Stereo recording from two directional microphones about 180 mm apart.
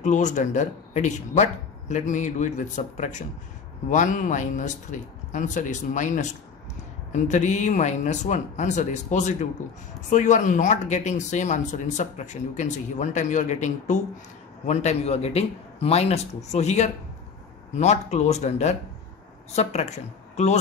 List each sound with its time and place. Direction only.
0.0 s a man's voice: 40° left (ahead or behind)